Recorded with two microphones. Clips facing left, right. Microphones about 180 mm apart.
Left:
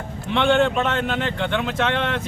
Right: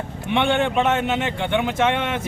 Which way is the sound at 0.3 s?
10° right (ahead or behind).